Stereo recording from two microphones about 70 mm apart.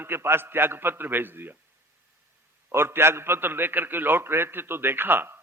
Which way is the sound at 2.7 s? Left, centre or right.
Right.